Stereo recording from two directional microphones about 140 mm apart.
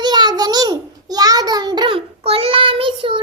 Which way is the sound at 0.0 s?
30° right (ahead or behind).